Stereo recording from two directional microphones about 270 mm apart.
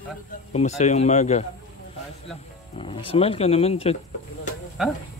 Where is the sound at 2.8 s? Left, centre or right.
Centre.